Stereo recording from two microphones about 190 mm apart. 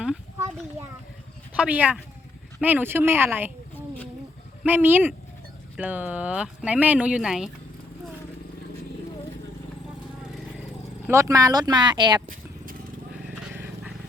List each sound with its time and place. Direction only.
1.5 s speech: 10° right (ahead or behind)
3.8 s a sound: 10° left (ahead or behind)
4.6 s speech: 10° right (ahead or behind)
11.0 s speech: 15° right (ahead or behind)
13.1 s vehicle: 5° right (ahead or behind)